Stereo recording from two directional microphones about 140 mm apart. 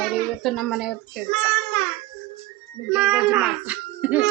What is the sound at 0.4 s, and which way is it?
Speech, centre (ahead or behind).